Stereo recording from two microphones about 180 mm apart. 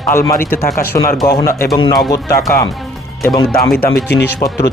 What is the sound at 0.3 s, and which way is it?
Speech, 50° left (ahead or behind).